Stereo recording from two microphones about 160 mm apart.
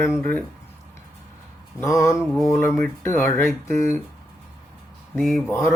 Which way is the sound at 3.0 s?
15° left (ahead or behind).